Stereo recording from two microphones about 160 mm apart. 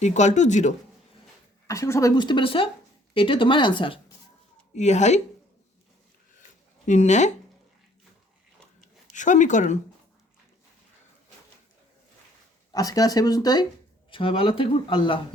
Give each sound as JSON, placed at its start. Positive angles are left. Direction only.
{"t": 0.0, "sound": "speech", "side_deg": 45}
{"t": 1.6, "sound": "speech", "side_deg": 20}
{"t": 4.7, "sound": "speech", "side_deg": 45}
{"t": 6.8, "sound": "speech", "side_deg": 50}
{"t": 9.1, "sound": "speech", "side_deg": 50}
{"t": 12.7, "sound": "speech", "side_deg": 20}